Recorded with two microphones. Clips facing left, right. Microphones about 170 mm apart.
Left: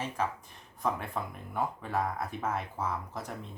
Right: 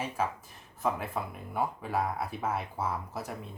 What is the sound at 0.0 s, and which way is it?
Speech, 5° right (ahead or behind).